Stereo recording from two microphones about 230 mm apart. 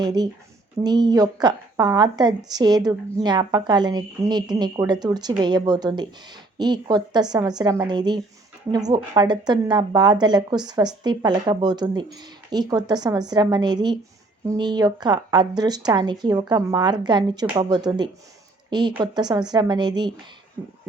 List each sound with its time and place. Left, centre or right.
0.0 s a woman's voice: centre